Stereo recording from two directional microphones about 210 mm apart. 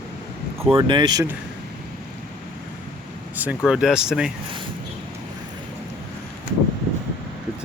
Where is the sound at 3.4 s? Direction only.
5° right (ahead or behind).